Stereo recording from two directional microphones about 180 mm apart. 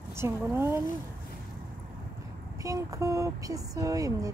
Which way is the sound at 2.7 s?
20° right (ahead or behind).